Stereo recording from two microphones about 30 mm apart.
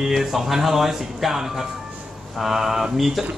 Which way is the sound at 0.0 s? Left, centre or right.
Centre.